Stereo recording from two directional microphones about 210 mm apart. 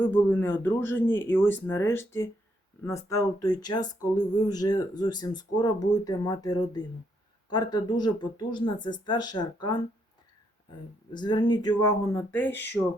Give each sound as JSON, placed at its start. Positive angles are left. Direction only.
{"t": 0.0, "sound": "speech", "side_deg": 10}